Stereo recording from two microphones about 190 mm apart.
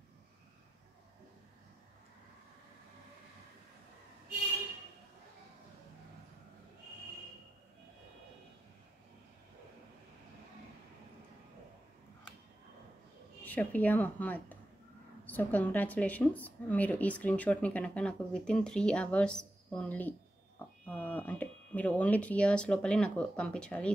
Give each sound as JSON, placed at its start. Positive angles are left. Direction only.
{"t": 13.4, "sound": "a woman's voice", "side_deg": 10}